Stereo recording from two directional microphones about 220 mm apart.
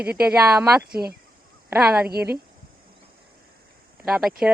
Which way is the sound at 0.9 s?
45° right (ahead or behind).